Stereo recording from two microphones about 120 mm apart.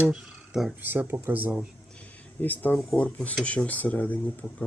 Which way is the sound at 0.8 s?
15° right (ahead or behind).